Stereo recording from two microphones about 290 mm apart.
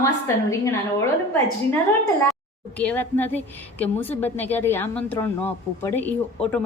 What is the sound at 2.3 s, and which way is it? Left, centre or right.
A woman's voice, centre.